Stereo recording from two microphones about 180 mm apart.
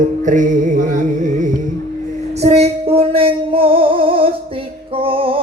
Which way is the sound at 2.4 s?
35° right (ahead or behind).